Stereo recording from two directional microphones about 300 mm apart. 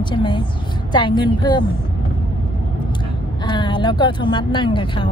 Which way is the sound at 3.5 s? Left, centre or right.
Centre.